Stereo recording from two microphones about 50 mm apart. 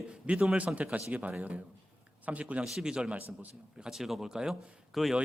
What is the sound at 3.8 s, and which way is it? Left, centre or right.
Speech, centre.